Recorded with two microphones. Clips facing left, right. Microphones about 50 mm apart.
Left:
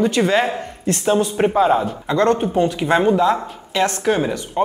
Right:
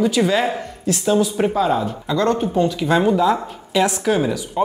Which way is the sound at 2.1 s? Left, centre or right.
Left.